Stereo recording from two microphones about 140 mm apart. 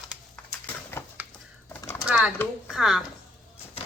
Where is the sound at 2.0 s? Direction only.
10° right (ahead or behind).